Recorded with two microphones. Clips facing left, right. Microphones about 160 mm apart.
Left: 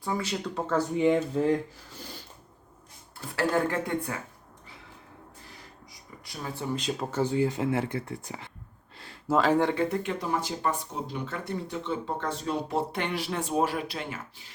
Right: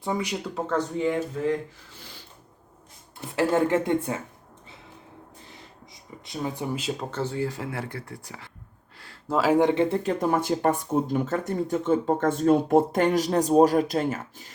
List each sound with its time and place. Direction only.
0.0 s speech: 20° right (ahead or behind)
0.4 s speech: centre (ahead or behind)
0.8 s speech: 15° left (ahead or behind)
3.2 s speech: 20° right (ahead or behind)
5.9 s speech: 20° right (ahead or behind)
6.7 s speech: centre (ahead or behind)
7.1 s speech: 15° left (ahead or behind)
9.2 s speech: centre (ahead or behind)
9.5 s speech: 15° right (ahead or behind)
9.9 s speech: 40° right (ahead or behind)